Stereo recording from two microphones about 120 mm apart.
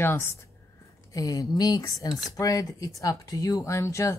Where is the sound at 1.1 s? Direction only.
30° left (ahead or behind).